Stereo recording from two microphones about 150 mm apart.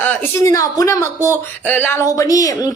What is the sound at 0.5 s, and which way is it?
A woman's voice, 25° left (ahead or behind).